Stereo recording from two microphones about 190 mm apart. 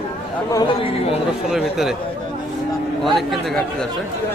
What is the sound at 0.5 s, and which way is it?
Speech, 25° left (ahead or behind).